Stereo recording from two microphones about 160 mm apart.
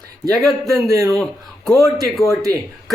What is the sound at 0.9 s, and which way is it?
Speech, 20° right (ahead or behind).